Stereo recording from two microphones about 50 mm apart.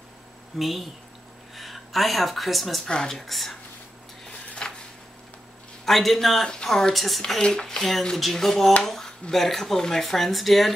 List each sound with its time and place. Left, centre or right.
0.6 s speech: centre
2.8 s speech: centre
4.3 s a sound: left
5.9 s speech: centre